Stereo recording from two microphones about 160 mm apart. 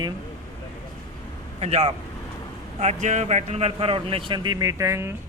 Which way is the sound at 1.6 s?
40° right (ahead or behind).